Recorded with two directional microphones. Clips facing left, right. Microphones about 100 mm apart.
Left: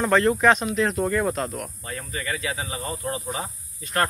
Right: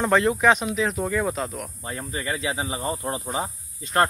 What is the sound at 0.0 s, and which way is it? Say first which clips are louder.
Speech: left 1 dB; 15° right (ahead or behind).